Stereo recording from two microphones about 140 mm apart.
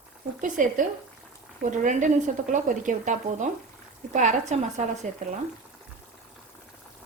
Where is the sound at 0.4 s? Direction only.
70° right (ahead or behind).